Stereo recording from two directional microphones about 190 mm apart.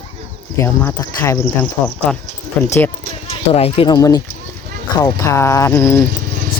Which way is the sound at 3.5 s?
30° left (ahead or behind).